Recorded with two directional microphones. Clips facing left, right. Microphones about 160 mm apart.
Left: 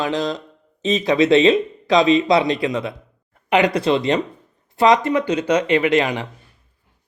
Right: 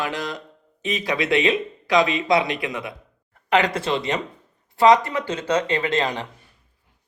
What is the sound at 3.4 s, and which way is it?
Speech, 15° left (ahead or behind).